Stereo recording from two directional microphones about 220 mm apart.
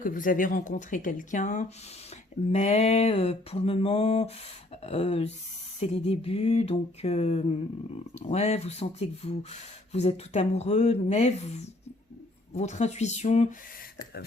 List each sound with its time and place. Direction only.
0.0 s speech: 40° left (ahead or behind)